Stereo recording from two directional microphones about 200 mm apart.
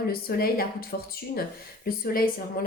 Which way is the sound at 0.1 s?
50° left (ahead or behind).